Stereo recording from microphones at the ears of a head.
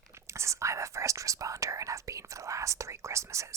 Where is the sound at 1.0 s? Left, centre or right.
Right.